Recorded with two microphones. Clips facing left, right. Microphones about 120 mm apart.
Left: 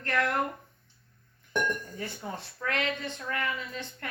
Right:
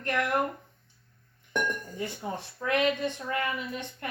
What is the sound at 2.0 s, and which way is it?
A woman's voice, 20° right (ahead or behind).